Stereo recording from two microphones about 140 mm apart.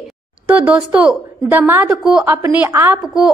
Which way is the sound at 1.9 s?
5° right (ahead or behind).